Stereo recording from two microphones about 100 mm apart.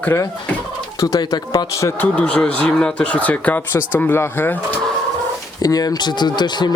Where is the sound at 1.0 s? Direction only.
40° left (ahead or behind).